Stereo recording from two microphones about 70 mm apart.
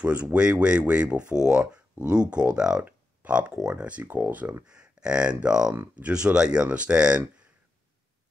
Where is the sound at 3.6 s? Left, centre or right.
Centre.